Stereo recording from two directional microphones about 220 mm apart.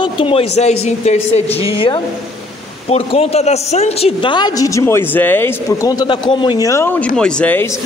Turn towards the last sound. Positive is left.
turn(degrees=10)  # may be behind; listen again after turning